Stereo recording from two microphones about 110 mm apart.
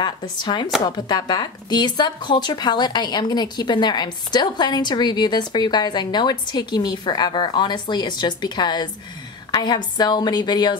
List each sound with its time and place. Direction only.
0.0 s a woman's voice: 40° left (ahead or behind)